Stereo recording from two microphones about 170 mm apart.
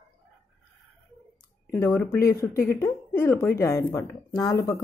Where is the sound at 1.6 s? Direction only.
15° left (ahead or behind).